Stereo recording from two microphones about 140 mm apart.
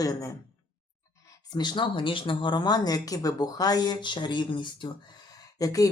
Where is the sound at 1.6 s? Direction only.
35° left (ahead or behind).